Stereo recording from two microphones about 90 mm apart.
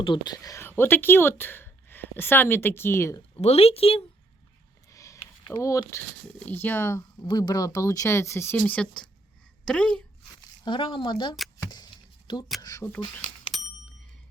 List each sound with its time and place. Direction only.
0.0 s speech: 65° left (ahead or behind)
0.6 s a woman's voice: 25° left (ahead or behind)
3.5 s a woman's voice: 90° left
4.9 s sniff: 35° left (ahead or behind)
5.5 s speech: 40° left (ahead or behind)
6.4 s speech: 20° left (ahead or behind)
7.3 s speech: 55° left (ahead or behind); by 8.5 s 30° left (ahead or behind)
8.5 s speech: 15° left (ahead or behind)
10.7 s speech: 70° left (ahead or behind)
12.8 s speech: 25° left (ahead or behind)
13.5 s bicycle bell: centre (ahead or behind)